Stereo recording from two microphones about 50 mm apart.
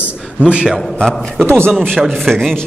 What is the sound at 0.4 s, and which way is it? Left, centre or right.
Speech, right.